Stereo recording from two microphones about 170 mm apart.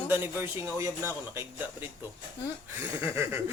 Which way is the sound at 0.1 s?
15° right (ahead or behind).